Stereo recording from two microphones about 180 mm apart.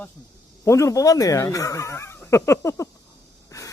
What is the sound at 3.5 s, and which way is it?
Breathing, 15° left (ahead or behind).